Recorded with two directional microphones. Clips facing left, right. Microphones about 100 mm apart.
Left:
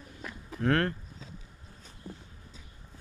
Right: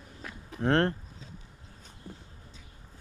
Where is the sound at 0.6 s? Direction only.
30° right (ahead or behind).